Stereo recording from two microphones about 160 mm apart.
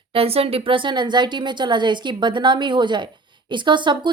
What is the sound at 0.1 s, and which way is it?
A woman's voice, 35° right (ahead or behind).